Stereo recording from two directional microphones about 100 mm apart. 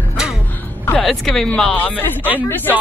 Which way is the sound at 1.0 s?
5° left (ahead or behind).